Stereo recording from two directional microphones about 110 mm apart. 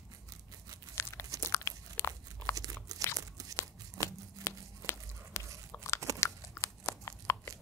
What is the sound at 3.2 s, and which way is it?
Tearing, 30° right (ahead or behind).